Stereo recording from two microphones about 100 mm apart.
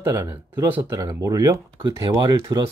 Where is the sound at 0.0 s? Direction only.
30° right (ahead or behind).